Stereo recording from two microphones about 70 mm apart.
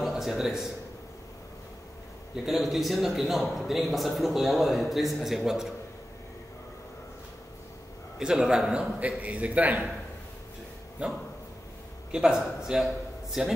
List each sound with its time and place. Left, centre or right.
0.0 s a man's voice: centre
2.3 s a man's voice: centre
8.2 s a man's voice: centre
11.0 s a man's voice: centre